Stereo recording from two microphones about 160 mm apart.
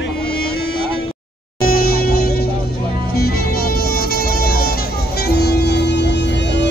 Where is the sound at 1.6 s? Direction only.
70° left (ahead or behind); by 6.7 s 90° left.